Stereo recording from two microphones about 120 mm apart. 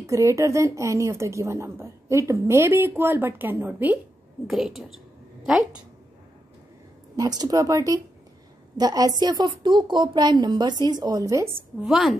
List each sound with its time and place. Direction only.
0.0 s a woman's voice: 25° right (ahead or behind)
4.5 s a woman's voice: centre (ahead or behind)
7.2 s a woman's voice: 30° right (ahead or behind)
11.8 s a woman's voice: 5° right (ahead or behind)